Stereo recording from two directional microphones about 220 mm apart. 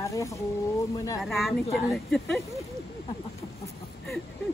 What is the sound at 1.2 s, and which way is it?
Speech, centre (ahead or behind).